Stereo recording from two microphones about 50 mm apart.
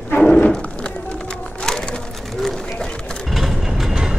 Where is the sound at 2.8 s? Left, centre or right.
Centre.